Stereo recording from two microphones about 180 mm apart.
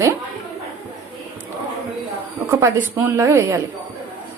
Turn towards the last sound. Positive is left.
turn(degrees=-15)  # may be behind; listen again after turning